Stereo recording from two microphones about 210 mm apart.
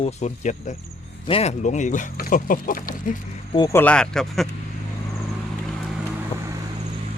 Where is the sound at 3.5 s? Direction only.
15° left (ahead or behind).